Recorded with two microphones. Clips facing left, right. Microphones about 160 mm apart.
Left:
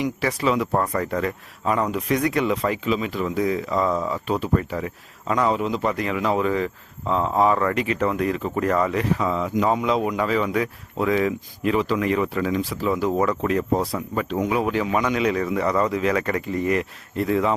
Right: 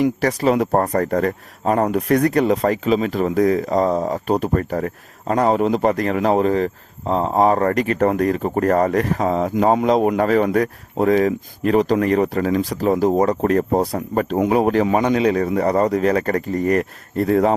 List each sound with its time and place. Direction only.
0.0 s speech: 40° right (ahead or behind)